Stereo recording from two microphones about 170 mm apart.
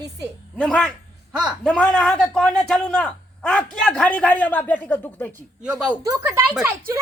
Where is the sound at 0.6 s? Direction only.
5° left (ahead or behind).